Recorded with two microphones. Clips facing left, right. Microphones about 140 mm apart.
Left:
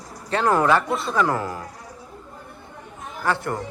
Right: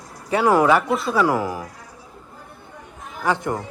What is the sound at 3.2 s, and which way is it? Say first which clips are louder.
Speech: right 2 dB; 15° right (ahead or behind).